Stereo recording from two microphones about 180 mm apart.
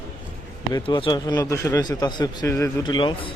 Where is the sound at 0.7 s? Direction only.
25° left (ahead or behind).